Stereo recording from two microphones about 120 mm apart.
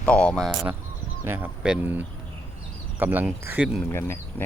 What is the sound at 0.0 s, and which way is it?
Speech, 10° left (ahead or behind).